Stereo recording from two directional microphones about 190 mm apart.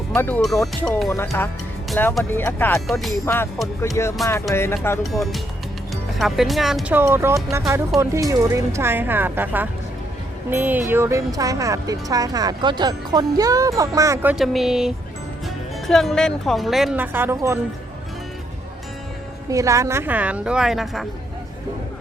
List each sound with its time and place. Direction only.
0.1 s speech: 10° left (ahead or behind)
2.8 s speech: centre (ahead or behind)
3.2 s speech: 15° left (ahead or behind)
5.1 s speech: centre (ahead or behind)
19.5 s speech: 15° right (ahead or behind); by 21.1 s centre (ahead or behind)